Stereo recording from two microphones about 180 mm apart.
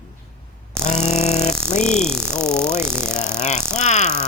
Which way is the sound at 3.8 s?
40° left (ahead or behind).